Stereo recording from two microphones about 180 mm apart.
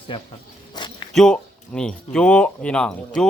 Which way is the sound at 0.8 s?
25° left (ahead or behind).